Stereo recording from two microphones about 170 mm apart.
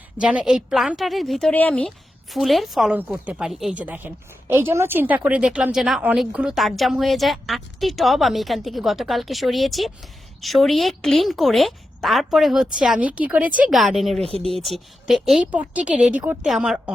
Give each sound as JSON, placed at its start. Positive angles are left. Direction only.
{"t": 0.2, "sound": "a woman's voice", "side_deg": -5}